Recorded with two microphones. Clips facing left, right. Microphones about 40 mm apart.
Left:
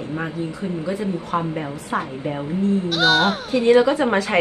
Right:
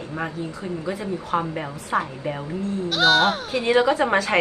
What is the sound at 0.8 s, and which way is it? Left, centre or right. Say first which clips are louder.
Speech: left 2 dB; centre.